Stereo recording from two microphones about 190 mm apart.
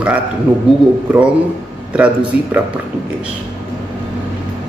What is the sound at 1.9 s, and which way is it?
Speech, 5° right (ahead or behind).